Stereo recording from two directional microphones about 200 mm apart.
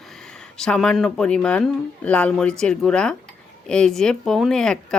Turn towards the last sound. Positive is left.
turn(degrees=5)  # may be behind; listen again after turning